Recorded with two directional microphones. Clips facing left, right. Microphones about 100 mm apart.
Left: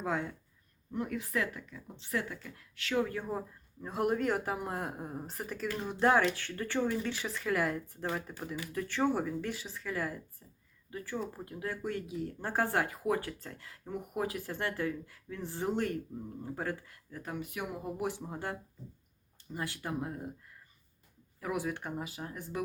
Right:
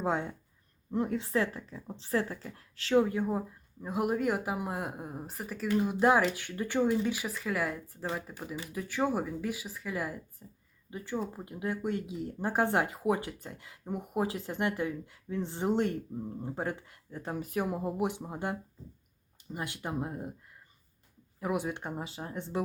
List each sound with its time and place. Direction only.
0.0 s speech: 25° right (ahead or behind)
3.0 s speech: 20° right (ahead or behind)
17.3 s speech: 35° right (ahead or behind)
17.9 s speech: 20° right (ahead or behind)
21.4 s speech: 20° right (ahead or behind)